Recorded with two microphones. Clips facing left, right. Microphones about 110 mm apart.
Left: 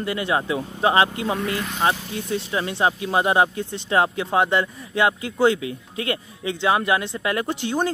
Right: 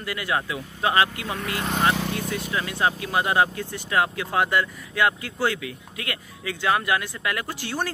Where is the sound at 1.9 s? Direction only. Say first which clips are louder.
Right 4 dB; 75° right (ahead or behind).